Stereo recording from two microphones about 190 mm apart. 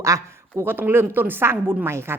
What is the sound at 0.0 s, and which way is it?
A woman's voice, 15° right (ahead or behind).